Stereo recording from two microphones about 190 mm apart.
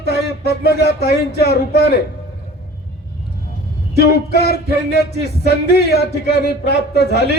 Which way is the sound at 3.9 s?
60° left (ahead or behind).